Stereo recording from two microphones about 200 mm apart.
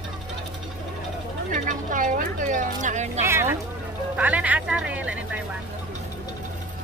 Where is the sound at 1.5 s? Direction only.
40° right (ahead or behind).